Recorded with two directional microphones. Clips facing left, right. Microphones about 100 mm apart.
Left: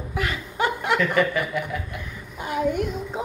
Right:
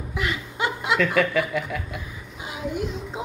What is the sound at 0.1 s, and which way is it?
Chuckle, 40° left (ahead or behind).